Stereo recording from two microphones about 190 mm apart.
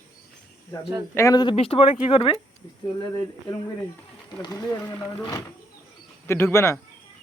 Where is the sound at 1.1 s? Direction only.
20° left (ahead or behind).